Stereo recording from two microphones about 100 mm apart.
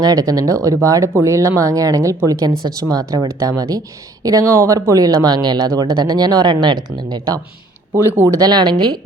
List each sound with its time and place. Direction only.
0.0 s speech: 40° right (ahead or behind)
7.9 s speech: 20° right (ahead or behind)
8.3 s speech: 40° right (ahead or behind)